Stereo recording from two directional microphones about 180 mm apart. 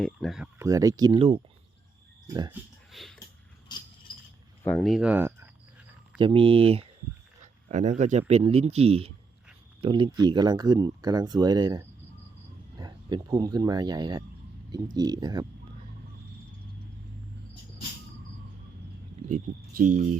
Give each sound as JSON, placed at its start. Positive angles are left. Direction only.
{"t": 0.0, "sound": "speech", "side_deg": 0}
{"t": 0.6, "sound": "speech", "side_deg": -20}
{"t": 2.2, "sound": "speech", "side_deg": -20}
{"t": 2.9, "sound": "a sound", "side_deg": 0}
{"t": 4.6, "sound": "speech", "side_deg": 5}
{"t": 6.1, "sound": "speech", "side_deg": -30}
{"t": 19.3, "sound": "speech", "side_deg": -50}